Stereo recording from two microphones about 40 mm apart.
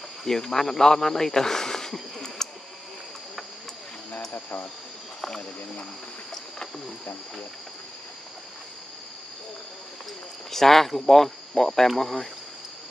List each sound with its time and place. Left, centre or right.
0.2 s speech: centre
4.3 s cricket: left
10.5 s speech: centre